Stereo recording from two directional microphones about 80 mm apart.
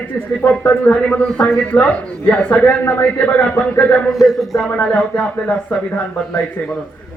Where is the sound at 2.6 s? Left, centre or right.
Left.